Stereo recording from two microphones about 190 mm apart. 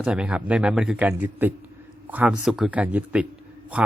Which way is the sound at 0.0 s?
5° right (ahead or behind).